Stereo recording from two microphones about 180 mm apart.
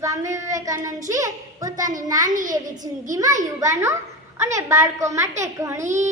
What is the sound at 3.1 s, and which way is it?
A woman's voice, 20° right (ahead or behind).